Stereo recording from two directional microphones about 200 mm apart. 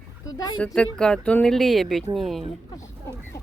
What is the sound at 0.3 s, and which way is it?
Speech, 20° left (ahead or behind).